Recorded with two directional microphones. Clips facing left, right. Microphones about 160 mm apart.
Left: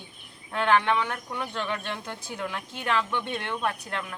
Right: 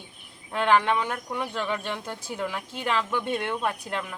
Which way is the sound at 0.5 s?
10° right (ahead or behind).